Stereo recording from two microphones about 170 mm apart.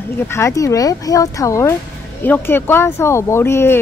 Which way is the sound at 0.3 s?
20° left (ahead or behind).